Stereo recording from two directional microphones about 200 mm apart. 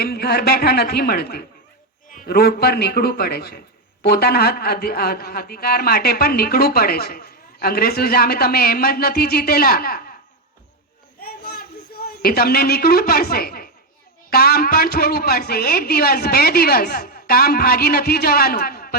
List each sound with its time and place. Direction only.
0.0 s a man's voice: 50° left (ahead or behind)
11.2 s a sound: 50° left (ahead or behind)
14.3 s a man's voice: 50° left (ahead or behind)